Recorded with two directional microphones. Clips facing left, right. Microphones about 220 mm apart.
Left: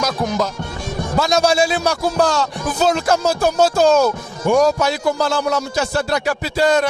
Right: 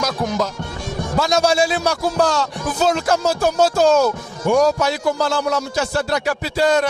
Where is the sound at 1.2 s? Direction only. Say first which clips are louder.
Left 1 dB; 10° left (ahead or behind).